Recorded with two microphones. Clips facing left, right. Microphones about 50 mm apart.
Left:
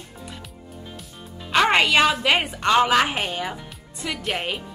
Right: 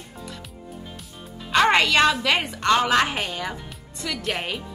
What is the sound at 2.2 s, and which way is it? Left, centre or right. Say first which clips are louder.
Speech: left 2 dB; left.